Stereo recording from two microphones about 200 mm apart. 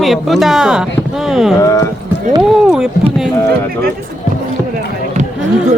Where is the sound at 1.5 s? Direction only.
15° left (ahead or behind).